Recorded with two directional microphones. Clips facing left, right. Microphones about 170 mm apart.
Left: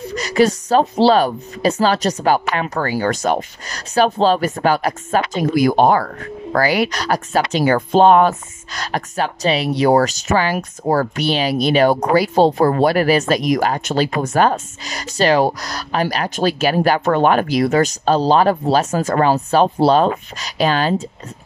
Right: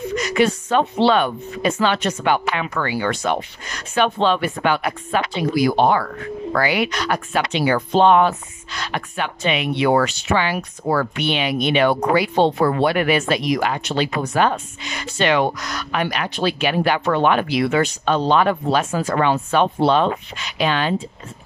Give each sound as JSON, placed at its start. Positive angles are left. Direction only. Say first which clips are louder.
{"t": 0.1, "sound": "speech", "louder": "left 3 dB", "side_deg": 35}